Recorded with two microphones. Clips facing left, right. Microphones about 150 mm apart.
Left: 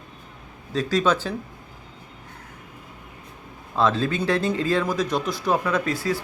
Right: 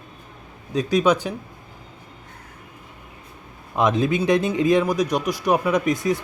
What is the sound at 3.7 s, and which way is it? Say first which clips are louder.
A man's voice: right 2 dB; 15° right (ahead or behind).